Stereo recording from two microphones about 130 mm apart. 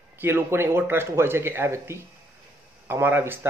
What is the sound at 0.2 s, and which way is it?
Speech, 15° right (ahead or behind).